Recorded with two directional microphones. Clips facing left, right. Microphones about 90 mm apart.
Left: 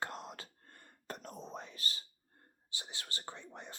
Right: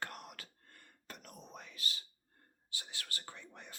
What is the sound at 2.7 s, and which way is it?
Speech, 25° left (ahead or behind).